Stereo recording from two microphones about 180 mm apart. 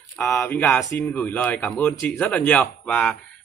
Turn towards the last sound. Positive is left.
turn(degrees=5)  # may be behind; listen again after turning